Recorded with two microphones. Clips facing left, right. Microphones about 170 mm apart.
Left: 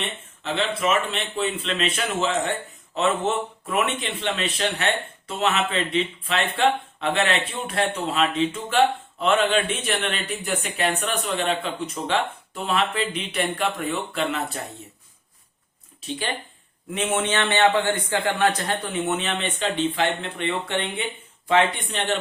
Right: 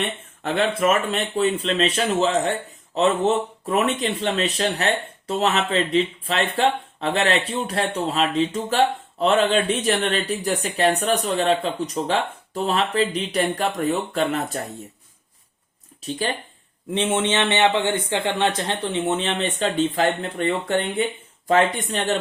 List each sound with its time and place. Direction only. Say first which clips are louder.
0.4 s speech: right 4 dB; 50° right (ahead or behind)
16.0 s speech: right 4 dB; 40° right (ahead or behind)
16.9 s a man's voice: right 3 dB; 25° right (ahead or behind)